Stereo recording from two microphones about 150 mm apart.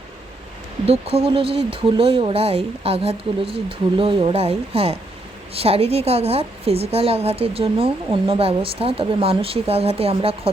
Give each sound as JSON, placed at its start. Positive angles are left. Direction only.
{"t": 0.9, "sound": "a woman's voice", "side_deg": -40}